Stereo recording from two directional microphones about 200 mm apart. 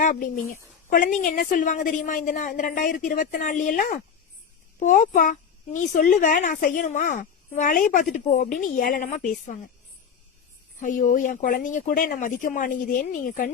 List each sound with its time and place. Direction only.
0.0 s a child's voice: 40° left (ahead or behind)
10.8 s a child's voice: 40° left (ahead or behind)